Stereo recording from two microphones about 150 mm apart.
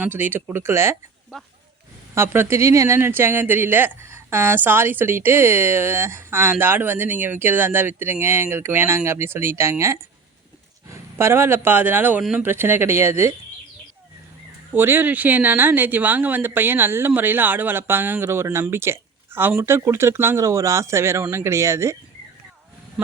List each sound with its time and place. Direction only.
0.0 s speech: 15° right (ahead or behind)
2.1 s speech: 15° right (ahead or behind)
11.2 s speech: 15° right (ahead or behind)
14.7 s speech: 15° right (ahead or behind)